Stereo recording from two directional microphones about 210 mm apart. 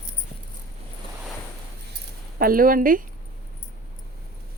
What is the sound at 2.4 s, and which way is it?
Speech, 45° right (ahead or behind).